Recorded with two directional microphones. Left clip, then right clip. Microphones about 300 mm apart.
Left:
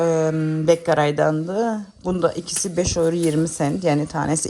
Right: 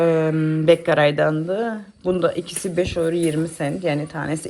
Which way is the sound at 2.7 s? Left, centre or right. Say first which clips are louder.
Even; left.